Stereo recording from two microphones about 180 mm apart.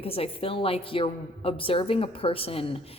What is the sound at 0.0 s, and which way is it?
Speech, 30° left (ahead or behind).